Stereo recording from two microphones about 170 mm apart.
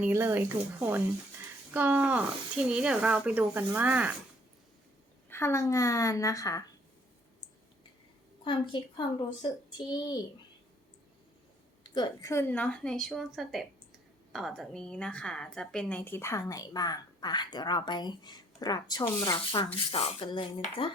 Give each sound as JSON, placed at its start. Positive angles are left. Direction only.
{"t": 0.0, "sound": "speech", "side_deg": -15}
{"t": 5.3, "sound": "a woman's voice", "side_deg": 15}
{"t": 8.4, "sound": "a woman's voice", "side_deg": 30}
{"t": 11.8, "sound": "a woman's voice", "side_deg": 25}